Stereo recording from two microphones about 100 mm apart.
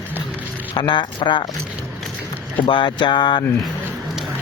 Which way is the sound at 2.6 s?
55° left (ahead or behind).